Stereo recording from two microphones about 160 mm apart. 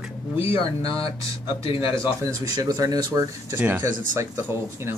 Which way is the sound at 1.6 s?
35° left (ahead or behind).